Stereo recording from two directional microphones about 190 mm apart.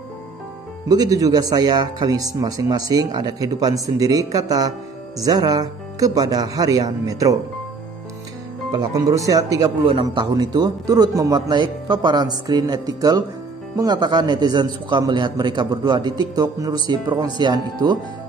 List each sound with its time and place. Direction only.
0.8 s speech: 20° right (ahead or behind)
8.7 s speech: 20° right (ahead or behind)